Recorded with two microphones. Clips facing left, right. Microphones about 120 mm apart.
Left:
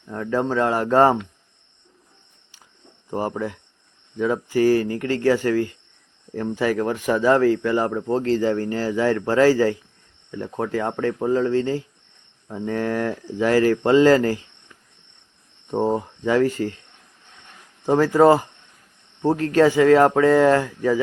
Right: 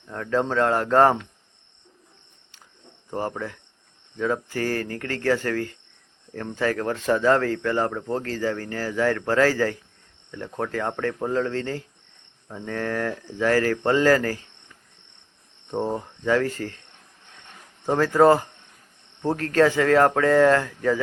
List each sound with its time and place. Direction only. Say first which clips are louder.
0.1 s speech: left 2 dB; 10° left (ahead or behind)
3.1 s speech: left 4 dB; 15° left (ahead or behind)
15.7 s speech: left 5 dB; 20° left (ahead or behind)
17.8 s speech: left 2 dB; 10° left (ahead or behind)
19.5 s speech: left 4 dB; 15° left (ahead or behind)